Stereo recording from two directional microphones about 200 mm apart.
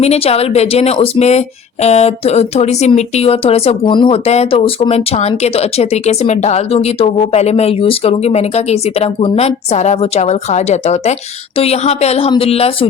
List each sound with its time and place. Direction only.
0.0 s speech: 30° left (ahead or behind)